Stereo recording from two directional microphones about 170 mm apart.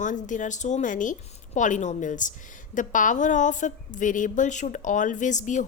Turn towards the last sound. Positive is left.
turn(degrees=45)  # may be behind; listen again after turning